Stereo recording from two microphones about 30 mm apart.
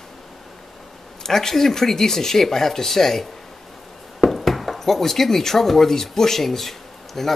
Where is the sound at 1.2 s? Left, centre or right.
Centre.